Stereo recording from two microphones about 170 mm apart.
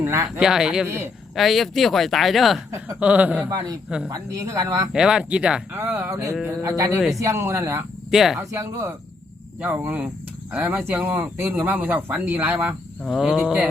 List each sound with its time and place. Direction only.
0.0 s a sound: 15° right (ahead or behind)
0.3 s speech: 5° right (ahead or behind)
1.4 s speech: centre (ahead or behind)
4.1 s speech: 20° right (ahead or behind)
4.9 s speech: 5° right (ahead or behind)
8.1 s speech: centre (ahead or behind)
8.4 s speech: 15° right (ahead or behind)